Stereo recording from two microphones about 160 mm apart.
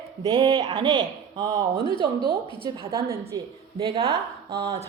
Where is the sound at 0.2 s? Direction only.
30° right (ahead or behind).